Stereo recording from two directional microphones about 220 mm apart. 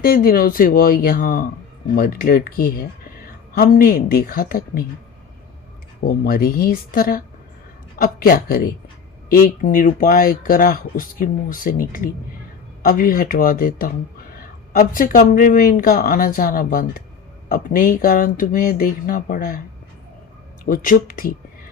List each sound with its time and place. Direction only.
0.0 s speech: 40° left (ahead or behind)
6.1 s speech: 40° left (ahead or behind)
20.7 s speech: 40° left (ahead or behind)